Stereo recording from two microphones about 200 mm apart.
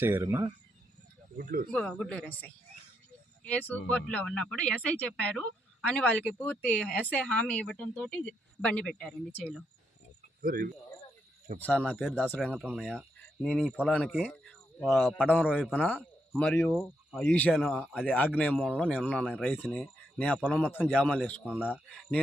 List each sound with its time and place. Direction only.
0.0 s speech: 10° right (ahead or behind)
1.4 s speech: 45° right (ahead or behind)
1.7 s a man's voice: 5° left (ahead or behind)
3.4 s a man's voice: 10° left (ahead or behind)
10.4 s speech: 45° right (ahead or behind)
11.6 s a man's voice: 5° left (ahead or behind)
18.0 s a man's voice: 10° left (ahead or behind)
21.4 s a man's voice: 5° right (ahead or behind)